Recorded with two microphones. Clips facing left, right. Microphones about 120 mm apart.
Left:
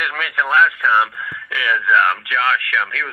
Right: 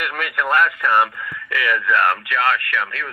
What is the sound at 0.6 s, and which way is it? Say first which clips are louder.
Speech: left 2 dB; 50° right (ahead or behind).